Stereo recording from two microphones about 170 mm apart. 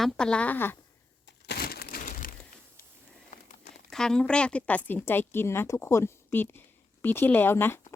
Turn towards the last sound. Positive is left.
turn(degrees=15)  # may be behind; listen again after turning